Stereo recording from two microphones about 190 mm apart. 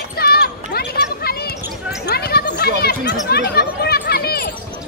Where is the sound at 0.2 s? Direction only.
55° left (ahead or behind).